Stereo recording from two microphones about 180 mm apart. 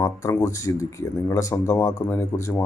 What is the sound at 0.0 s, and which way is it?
A man's voice, 15° left (ahead or behind).